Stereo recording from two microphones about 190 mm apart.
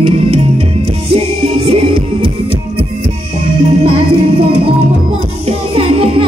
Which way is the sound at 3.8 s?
30° right (ahead or behind).